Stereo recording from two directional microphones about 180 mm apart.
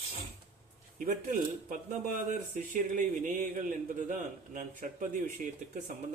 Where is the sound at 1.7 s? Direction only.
50° right (ahead or behind).